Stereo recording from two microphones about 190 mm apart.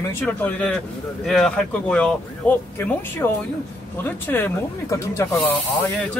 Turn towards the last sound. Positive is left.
turn(degrees=15)  # may be behind; listen again after turning